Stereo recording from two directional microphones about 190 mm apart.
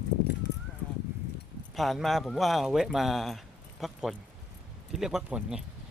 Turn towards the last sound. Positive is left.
turn(degrees=-5)  # may be behind; listen again after turning